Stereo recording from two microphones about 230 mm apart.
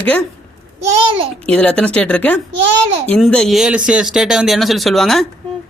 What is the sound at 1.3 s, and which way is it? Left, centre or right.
Speech, centre.